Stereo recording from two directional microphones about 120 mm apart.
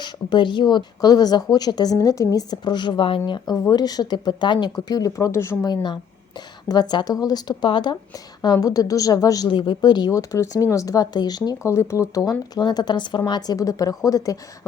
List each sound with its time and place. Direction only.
0.0 s speech: 40° left (ahead or behind); by 5.5 s 25° left (ahead or behind)
5.6 s speech: 40° left (ahead or behind)